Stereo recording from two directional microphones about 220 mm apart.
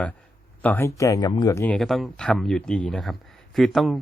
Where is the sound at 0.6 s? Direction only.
10° left (ahead or behind).